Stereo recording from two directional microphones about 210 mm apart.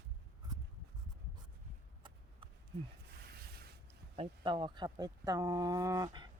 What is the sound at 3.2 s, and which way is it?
Rub, 50° right (ahead or behind).